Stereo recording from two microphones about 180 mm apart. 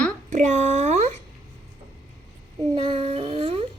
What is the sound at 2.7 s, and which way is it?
Child singing, 30° right (ahead or behind).